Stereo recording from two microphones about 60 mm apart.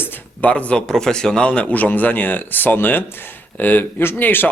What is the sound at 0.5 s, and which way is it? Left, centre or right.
A man's voice, centre.